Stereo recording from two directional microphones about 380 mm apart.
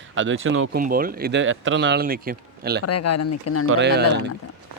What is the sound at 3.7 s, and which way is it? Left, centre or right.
Speech, right.